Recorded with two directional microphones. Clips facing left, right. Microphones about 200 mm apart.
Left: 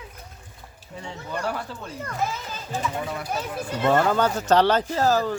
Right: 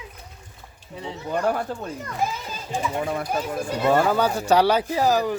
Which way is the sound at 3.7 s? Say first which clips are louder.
Right 1 dB; 10° right (ahead or behind).